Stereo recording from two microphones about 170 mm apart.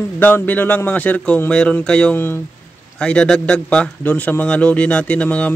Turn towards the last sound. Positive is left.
turn(degrees=5)  # may be behind; listen again after turning